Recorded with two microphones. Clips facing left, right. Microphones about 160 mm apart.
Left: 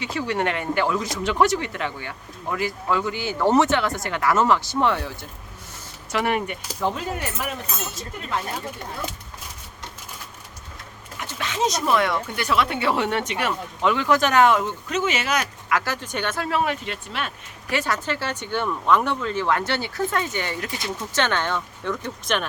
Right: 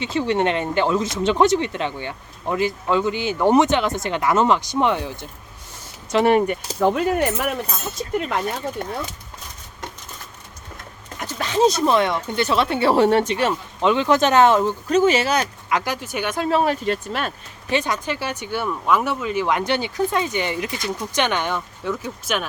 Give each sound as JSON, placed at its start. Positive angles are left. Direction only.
{"t": 0.0, "sound": "speech", "side_deg": -25}
{"t": 6.1, "sound": "speech", "side_deg": -30}
{"t": 6.7, "sound": "speech", "side_deg": -65}
{"t": 11.2, "sound": "speech", "side_deg": -35}
{"t": 15.8, "sound": "speech", "side_deg": -15}
{"t": 16.5, "sound": "speech", "side_deg": -35}
{"t": 17.7, "sound": "speech", "side_deg": -20}